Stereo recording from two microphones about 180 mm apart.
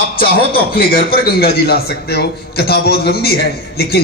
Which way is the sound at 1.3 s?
60° left (ahead or behind).